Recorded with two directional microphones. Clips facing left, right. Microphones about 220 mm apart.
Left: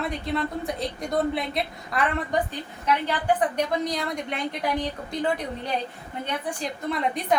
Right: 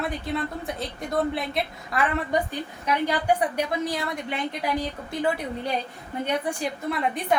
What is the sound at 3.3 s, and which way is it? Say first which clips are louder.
A woman's voice: left 1 dB; 5° right (ahead or behind).